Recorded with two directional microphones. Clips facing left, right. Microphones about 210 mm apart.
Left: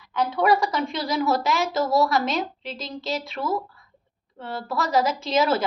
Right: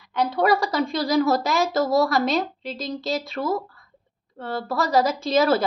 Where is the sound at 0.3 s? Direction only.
35° right (ahead or behind).